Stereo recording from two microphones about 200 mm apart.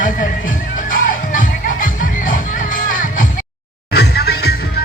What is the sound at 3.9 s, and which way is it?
Music, 55° left (ahead or behind).